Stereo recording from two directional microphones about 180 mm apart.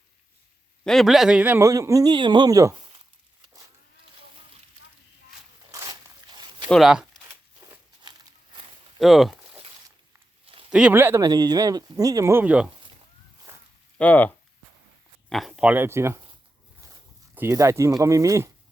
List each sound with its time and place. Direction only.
0.9 s speech: centre (ahead or behind); by 2.8 s 20° right (ahead or behind)
5.7 s zipper: 20° right (ahead or behind)
6.7 s speech: centre (ahead or behind)
9.0 s a sound: centre (ahead or behind)
10.4 s a sound: 30° right (ahead or behind)
10.7 s speech: 5° right (ahead or behind)
14.0 s speech: 10° left (ahead or behind); by 16.2 s 15° right (ahead or behind)
17.3 s speech: 15° right (ahead or behind)